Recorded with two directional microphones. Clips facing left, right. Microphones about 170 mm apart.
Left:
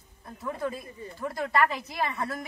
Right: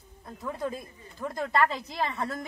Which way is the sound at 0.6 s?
20° right (ahead or behind).